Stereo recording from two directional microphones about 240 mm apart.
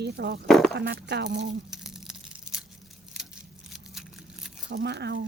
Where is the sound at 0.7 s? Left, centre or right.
Right.